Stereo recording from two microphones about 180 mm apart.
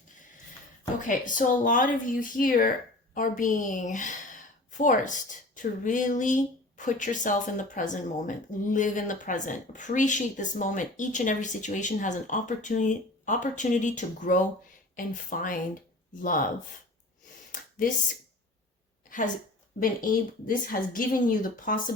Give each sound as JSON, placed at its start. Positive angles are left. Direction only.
{"t": 0.9, "sound": "speech", "side_deg": 45}
{"t": 17.5, "sound": "a sound", "side_deg": 50}
{"t": 19.8, "sound": "speech", "side_deg": 50}